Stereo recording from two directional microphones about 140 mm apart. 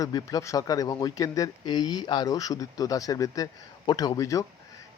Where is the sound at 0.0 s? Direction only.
25° left (ahead or behind).